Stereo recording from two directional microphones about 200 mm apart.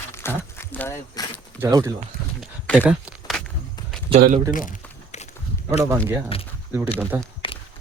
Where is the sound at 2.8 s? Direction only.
Centre (ahead or behind).